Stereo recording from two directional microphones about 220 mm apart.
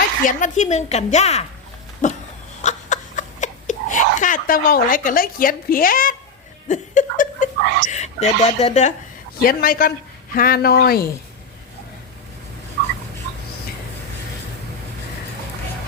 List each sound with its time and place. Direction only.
0.3 s a woman's voice: 35° left (ahead or behind)
2.6 s a sound: 35° left (ahead or behind)
6.7 s a woman's voice: 35° left (ahead or behind)
7.6 s speech: 50° right (ahead or behind)
7.9 s a woman's voice: 30° left (ahead or behind)
9.4 s a woman's voice: 40° left (ahead or behind)